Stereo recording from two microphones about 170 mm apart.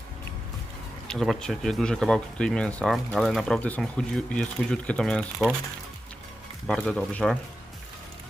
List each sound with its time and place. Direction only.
1.0 s speech: centre (ahead or behind)
6.7 s speech: centre (ahead or behind)